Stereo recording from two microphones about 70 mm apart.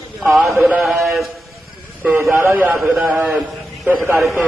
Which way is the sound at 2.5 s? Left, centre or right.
Right.